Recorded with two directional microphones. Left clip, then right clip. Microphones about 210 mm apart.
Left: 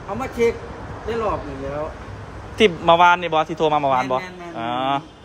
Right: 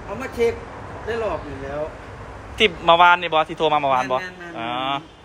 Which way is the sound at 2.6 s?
15° left (ahead or behind).